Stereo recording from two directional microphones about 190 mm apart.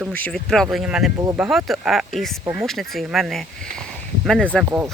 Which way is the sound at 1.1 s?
15° right (ahead or behind).